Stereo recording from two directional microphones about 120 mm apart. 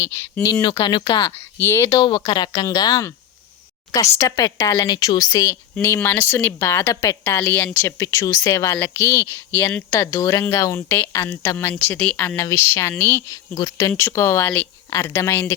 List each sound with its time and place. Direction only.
0.0 s speech: 20° left (ahead or behind)
0.6 s a woman's voice: 40° left (ahead or behind)
1.5 s speech: 20° left (ahead or behind)
2.0 s a woman's voice: 40° left (ahead or behind)
4.2 s speech: 30° left (ahead or behind)
5.8 s speech: 20° left (ahead or behind)
10.8 s speech: 15° left (ahead or behind)